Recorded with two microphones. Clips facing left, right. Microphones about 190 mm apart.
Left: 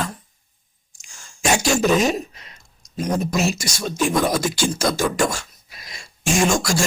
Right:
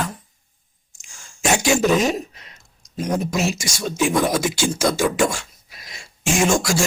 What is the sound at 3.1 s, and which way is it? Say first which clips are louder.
Speech: even; 10° right (ahead or behind).